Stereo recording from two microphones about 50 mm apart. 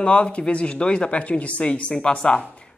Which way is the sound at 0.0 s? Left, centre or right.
Left.